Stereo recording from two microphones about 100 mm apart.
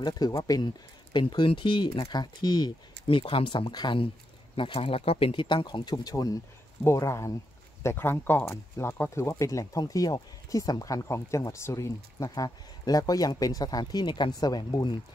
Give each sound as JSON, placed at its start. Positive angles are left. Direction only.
{"t": 0.0, "sound": "speech", "side_deg": 40}
{"t": 1.3, "sound": "speech", "side_deg": 55}
{"t": 2.0, "sound": "speech", "side_deg": 45}
{"t": 6.8, "sound": "speech", "side_deg": 30}